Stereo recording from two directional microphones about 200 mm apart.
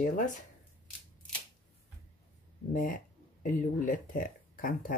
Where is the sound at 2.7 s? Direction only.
40° left (ahead or behind).